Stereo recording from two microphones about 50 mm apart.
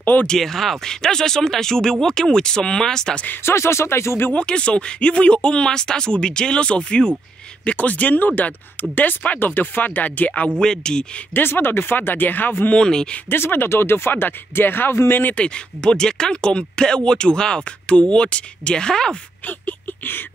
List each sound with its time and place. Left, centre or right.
0.0 s speech: left
0.3 s speech: centre
3.4 s speech: left
4.4 s speech: left
7.6 s speech: left
10.6 s speech: centre
11.3 s speech: left
12.7 s speech: centre
13.3 s speech: left
15.3 s speech: centre
19.4 s a sound: left